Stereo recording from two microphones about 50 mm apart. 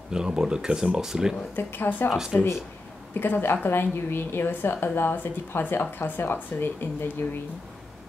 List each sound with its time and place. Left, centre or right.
0.1 s speech: centre
1.5 s a woman's voice: left
2.0 s speech: centre
3.2 s a woman's voice: left